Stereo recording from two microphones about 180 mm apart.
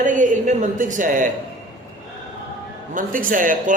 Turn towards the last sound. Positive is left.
turn(degrees=-50)  # may be behind; listen again after turning